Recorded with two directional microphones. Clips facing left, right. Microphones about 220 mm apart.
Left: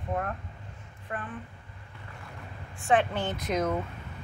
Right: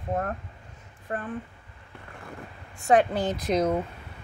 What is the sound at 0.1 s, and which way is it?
Speech, 40° right (ahead or behind).